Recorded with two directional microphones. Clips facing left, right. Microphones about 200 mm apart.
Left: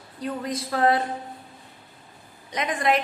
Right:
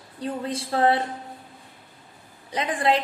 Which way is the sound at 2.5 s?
30° right (ahead or behind).